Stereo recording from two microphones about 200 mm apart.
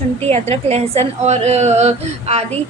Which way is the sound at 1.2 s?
35° right (ahead or behind).